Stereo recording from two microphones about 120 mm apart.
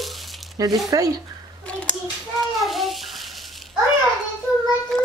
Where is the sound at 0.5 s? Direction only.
30° right (ahead or behind).